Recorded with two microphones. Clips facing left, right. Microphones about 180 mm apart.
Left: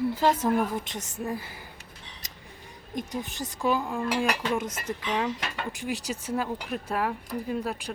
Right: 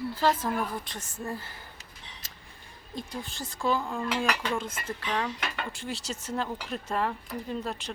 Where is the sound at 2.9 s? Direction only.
15° left (ahead or behind).